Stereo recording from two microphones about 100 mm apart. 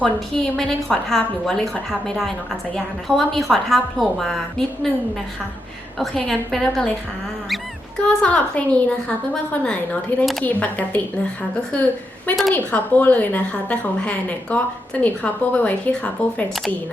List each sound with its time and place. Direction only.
0.0 s a woman's voice: 5° left (ahead or behind)
6.0 s a woman's voice: 5° left (ahead or behind)
8.0 s a woman's voice: 10° left (ahead or behind)